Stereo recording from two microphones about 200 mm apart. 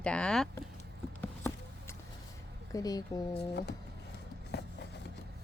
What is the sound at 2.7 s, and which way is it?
Speech, 20° left (ahead or behind).